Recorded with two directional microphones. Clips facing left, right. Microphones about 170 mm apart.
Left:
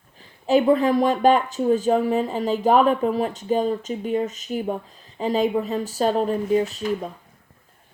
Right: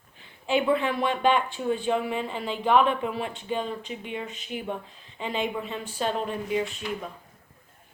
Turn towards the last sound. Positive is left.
turn(degrees=40)  # may be behind; listen again after turning